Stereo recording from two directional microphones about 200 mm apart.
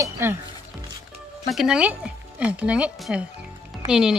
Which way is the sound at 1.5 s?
Centre (ahead or behind).